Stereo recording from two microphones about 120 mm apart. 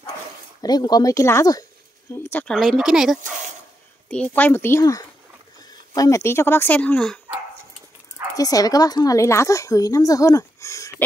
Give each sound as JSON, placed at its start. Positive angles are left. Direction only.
{"t": 0.6, "sound": "a woman's voice", "side_deg": 35}
{"t": 2.3, "sound": "speech", "side_deg": 5}
{"t": 4.1, "sound": "a woman's voice", "side_deg": 10}
{"t": 8.4, "sound": "a woman's voice", "side_deg": 30}